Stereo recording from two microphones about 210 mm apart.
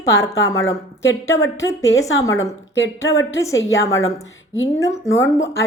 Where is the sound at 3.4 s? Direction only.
15° left (ahead or behind).